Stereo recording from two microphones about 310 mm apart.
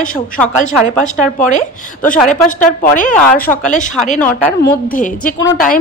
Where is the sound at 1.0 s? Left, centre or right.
Left.